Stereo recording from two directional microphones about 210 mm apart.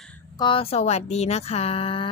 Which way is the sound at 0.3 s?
25° left (ahead or behind).